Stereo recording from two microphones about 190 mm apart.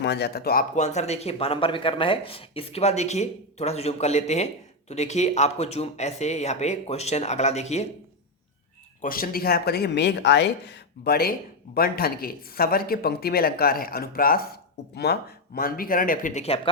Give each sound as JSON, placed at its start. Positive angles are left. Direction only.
{"t": 0.0, "sound": "speech", "side_deg": 60}
{"t": 0.8, "sound": "speech", "side_deg": 35}
{"t": 9.0, "sound": "speech", "side_deg": 50}